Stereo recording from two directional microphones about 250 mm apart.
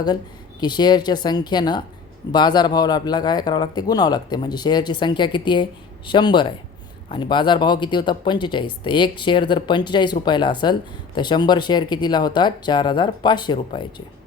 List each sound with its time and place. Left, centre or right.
0.6 s speech: centre